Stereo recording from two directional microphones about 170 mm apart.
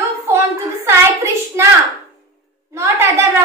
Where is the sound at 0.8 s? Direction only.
15° right (ahead or behind).